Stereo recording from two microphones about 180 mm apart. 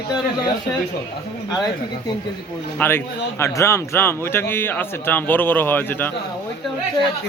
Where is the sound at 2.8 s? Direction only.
10° left (ahead or behind).